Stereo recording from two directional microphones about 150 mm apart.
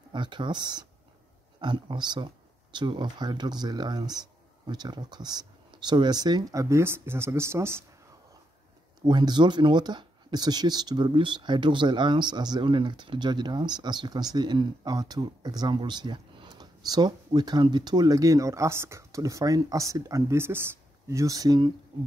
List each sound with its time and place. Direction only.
0.1 s speech: 30° right (ahead or behind)
9.0 s speech: 30° right (ahead or behind)